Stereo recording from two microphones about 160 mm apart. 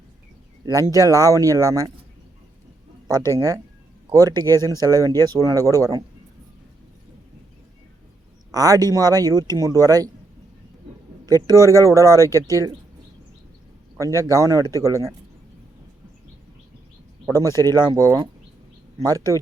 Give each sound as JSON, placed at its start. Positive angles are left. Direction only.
{"t": 0.6, "sound": "speech", "side_deg": -20}
{"t": 3.3, "sound": "speech", "side_deg": -20}
{"t": 8.5, "sound": "speech", "side_deg": -20}
{"t": 11.3, "sound": "speech", "side_deg": -20}
{"t": 13.9, "sound": "speech", "side_deg": -20}
{"t": 17.2, "sound": "speech", "side_deg": -20}